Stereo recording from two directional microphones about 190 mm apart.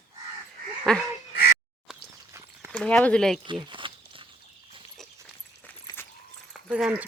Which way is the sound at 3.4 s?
25° right (ahead or behind).